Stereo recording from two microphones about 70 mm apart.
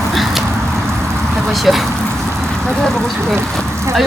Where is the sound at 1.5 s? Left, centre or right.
Centre.